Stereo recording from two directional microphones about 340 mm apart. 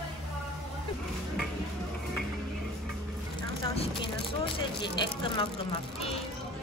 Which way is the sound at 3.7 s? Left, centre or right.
Centre.